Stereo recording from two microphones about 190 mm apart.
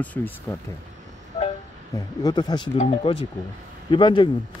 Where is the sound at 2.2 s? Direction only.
20° left (ahead or behind).